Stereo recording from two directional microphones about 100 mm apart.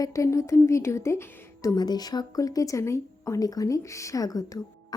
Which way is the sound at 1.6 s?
45° left (ahead or behind).